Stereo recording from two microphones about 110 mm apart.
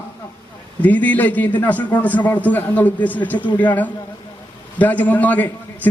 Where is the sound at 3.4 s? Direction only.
45° left (ahead or behind).